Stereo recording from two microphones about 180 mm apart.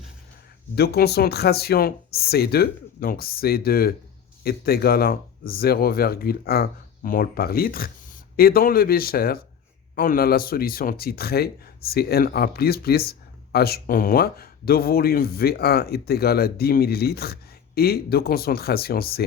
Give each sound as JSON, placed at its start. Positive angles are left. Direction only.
{"t": 0.8, "sound": "speech", "side_deg": 60}